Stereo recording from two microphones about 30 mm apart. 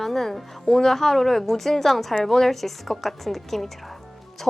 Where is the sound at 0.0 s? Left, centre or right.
Centre.